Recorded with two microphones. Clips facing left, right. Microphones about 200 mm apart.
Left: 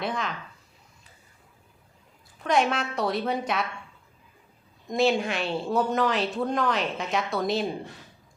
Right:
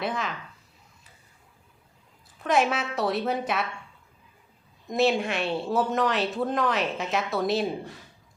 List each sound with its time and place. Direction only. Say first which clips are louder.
0.0 s speech: even; centre (ahead or behind)
2.4 s speech: even; centre (ahead or behind)
4.9 s speech: even; centre (ahead or behind)